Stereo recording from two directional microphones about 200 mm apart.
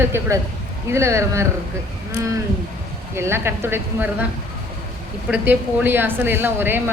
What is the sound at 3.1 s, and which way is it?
A woman's voice, 10° right (ahead or behind).